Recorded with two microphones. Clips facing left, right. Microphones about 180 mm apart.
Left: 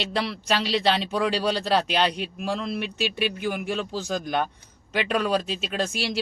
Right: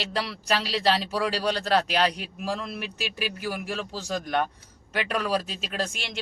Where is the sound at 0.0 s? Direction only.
Centre (ahead or behind).